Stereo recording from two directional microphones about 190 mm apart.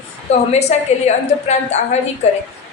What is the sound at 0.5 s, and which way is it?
A woman's voice, 35° left (ahead or behind).